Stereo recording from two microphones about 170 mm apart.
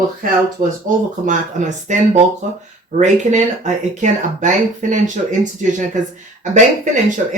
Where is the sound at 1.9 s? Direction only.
45° right (ahead or behind).